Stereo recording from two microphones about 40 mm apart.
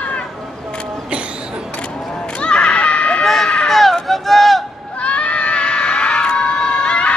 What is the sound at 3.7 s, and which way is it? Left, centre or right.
Run, centre.